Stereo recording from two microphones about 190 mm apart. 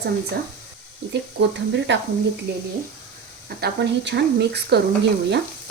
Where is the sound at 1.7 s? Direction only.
70° right (ahead or behind).